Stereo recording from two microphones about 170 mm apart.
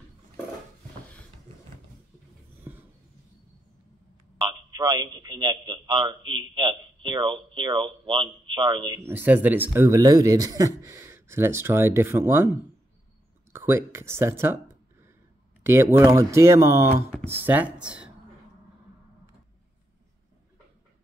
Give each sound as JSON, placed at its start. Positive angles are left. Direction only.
{"t": 4.4, "sound": "a man's voice", "side_deg": -25}
{"t": 13.5, "sound": "a sound", "side_deg": -15}
{"t": 15.6, "sound": "speech", "side_deg": -15}